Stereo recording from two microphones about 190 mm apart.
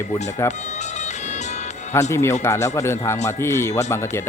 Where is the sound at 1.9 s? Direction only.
15° left (ahead or behind).